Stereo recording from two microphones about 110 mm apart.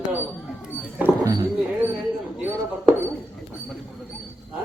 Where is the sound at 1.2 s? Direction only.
35° right (ahead or behind).